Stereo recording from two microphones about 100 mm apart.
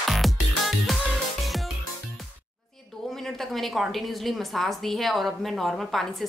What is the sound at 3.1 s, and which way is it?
A woman's voice, 5° left (ahead or behind).